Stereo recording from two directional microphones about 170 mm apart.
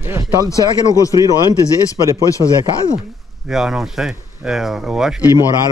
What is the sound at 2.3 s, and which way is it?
Speech, 20° left (ahead or behind).